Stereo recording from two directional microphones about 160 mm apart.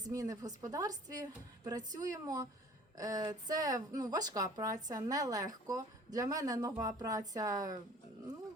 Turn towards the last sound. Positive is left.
turn(degrees=-20)  # may be behind; listen again after turning